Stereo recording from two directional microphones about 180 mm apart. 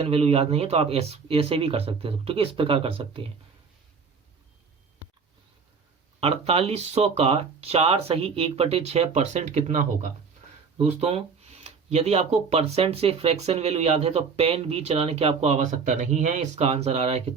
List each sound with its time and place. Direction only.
0.0 s speech: 35° right (ahead or behind)
6.1 s speech: 35° right (ahead or behind)